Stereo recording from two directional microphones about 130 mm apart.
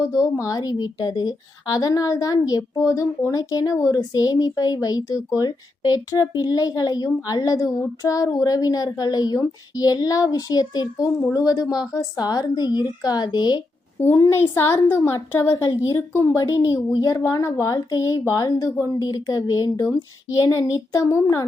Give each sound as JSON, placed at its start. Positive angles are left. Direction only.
{"t": 0.0, "sound": "a woman's voice", "side_deg": 25}
{"t": 14.0, "sound": "a child's voice", "side_deg": 15}